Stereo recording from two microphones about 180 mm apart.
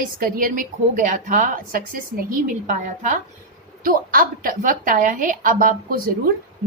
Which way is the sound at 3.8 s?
50° right (ahead or behind).